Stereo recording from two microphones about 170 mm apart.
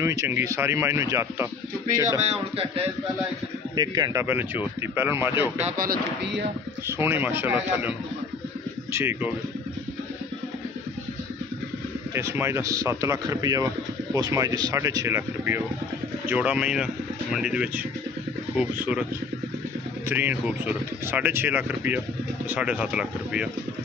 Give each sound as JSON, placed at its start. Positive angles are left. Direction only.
{"t": 0.0, "sound": "speech", "side_deg": -15}
{"t": 2.2, "sound": "speech", "side_deg": -35}
{"t": 3.7, "sound": "speech", "side_deg": -25}
{"t": 5.8, "sound": "speech", "side_deg": -60}
{"t": 6.9, "sound": "speech", "side_deg": -15}
{"t": 8.9, "sound": "speech", "side_deg": -15}
{"t": 12.1, "sound": "speech", "side_deg": -15}
{"t": 20.1, "sound": "speech", "side_deg": -10}